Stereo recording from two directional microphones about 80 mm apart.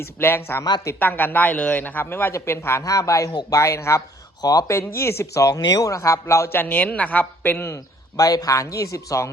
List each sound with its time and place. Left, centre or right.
0.2 s a man's voice: left
2.8 s speech: left
6.6 s a man's voice: left
8.1 s speech: left